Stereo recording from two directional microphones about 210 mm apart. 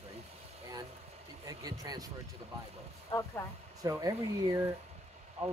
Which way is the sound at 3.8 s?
15° right (ahead or behind).